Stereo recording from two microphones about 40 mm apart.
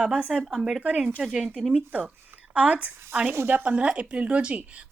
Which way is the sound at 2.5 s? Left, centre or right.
Right.